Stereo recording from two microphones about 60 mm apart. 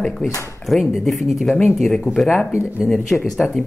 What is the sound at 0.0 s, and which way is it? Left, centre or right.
Speech, centre.